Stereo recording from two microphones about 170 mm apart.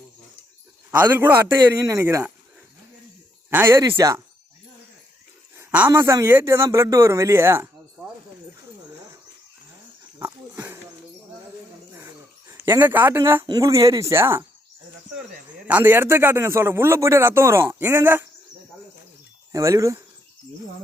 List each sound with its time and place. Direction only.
0.9 s speech: 10° right (ahead or behind)
3.5 s speech: 15° right (ahead or behind)
5.5 s speech: 10° right (ahead or behind)
10.2 s a sound: 10° right (ahead or behind)
11.9 s speech: 10° right (ahead or behind)
15.6 s speech: 10° right (ahead or behind)
19.5 s speech: 20° right (ahead or behind)